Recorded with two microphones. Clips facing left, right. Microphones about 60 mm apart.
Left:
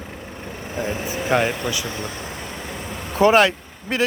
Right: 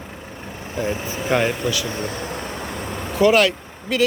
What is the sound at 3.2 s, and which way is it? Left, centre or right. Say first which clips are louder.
Speech: left 1 dB; left.